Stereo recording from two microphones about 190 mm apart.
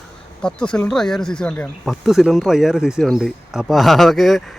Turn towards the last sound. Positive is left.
turn(degrees=0)  # may be behind; listen again after turning